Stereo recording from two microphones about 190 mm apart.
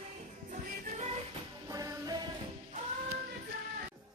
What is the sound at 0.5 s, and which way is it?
Music, 40° right (ahead or behind).